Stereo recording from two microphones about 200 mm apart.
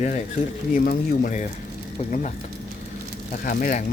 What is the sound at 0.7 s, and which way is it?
Speech, 45° left (ahead or behind).